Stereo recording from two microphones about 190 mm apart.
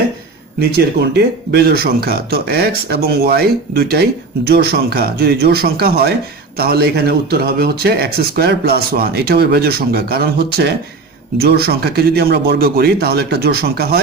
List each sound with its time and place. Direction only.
0.6 s speech: 55° right (ahead or behind)